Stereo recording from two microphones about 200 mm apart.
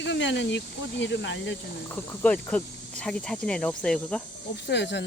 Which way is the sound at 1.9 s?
5° left (ahead or behind).